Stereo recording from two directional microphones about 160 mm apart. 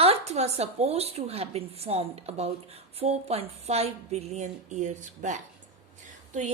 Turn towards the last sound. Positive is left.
turn(degrees=-50)  # may be behind; listen again after turning